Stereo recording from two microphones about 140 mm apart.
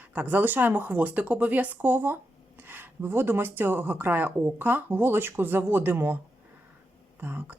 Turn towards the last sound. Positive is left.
turn(degrees=-15)  # may be behind; listen again after turning